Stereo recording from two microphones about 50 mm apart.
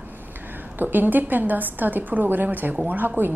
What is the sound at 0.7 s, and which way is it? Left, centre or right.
A woman's voice, right.